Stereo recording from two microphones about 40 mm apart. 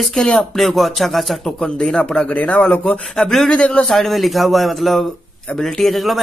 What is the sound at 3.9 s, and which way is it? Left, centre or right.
Speech, centre.